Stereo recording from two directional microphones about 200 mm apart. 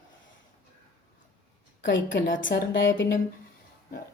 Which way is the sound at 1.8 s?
65° left (ahead or behind).